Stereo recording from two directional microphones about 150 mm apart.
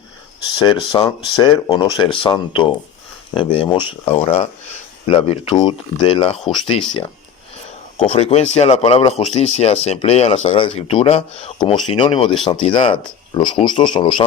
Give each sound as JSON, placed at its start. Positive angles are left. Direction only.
{"t": 0.6, "sound": "speech", "side_deg": 30}
{"t": 8.1, "sound": "speech", "side_deg": 50}